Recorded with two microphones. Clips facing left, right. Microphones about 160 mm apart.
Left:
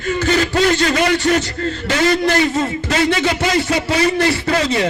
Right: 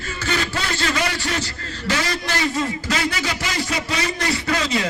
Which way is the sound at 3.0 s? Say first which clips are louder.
Left 8 dB; 25° left (ahead or behind).